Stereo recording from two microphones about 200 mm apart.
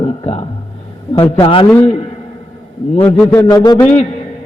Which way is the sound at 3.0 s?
10° left (ahead or behind).